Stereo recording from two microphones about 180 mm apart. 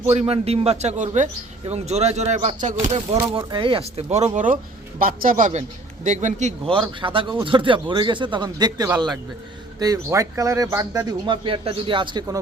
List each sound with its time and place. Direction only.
0.0 s a man's voice: 35° right (ahead or behind)
4.9 s a man's voice: 50° right (ahead or behind)
6.7 s speech: 30° right (ahead or behind)
11.3 s speech: 30° right (ahead or behind)